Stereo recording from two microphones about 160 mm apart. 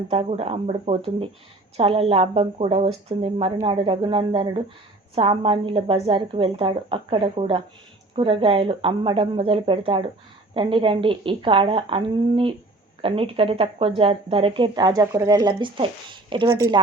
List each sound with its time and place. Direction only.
0.1 s a woman's voice: 40° right (ahead or behind)